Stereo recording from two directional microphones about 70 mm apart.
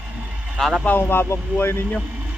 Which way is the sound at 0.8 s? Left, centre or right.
Left.